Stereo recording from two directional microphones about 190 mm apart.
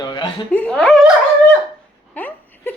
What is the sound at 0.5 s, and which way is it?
Speech, 5° left (ahead or behind).